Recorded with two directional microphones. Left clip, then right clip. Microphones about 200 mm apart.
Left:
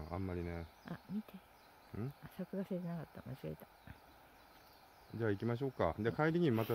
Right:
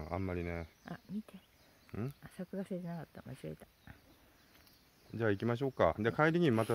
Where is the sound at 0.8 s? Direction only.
5° left (ahead or behind).